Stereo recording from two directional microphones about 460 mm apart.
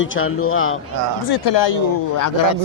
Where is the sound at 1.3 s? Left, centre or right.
Left.